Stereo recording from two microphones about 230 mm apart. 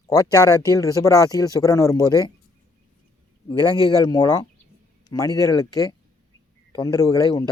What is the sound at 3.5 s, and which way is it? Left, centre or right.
Speech, centre.